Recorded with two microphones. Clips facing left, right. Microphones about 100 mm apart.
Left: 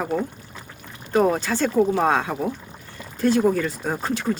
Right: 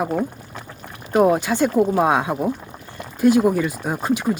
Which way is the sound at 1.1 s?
15° right (ahead or behind).